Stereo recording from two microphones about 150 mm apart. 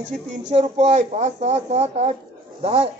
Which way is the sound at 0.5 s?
50° right (ahead or behind).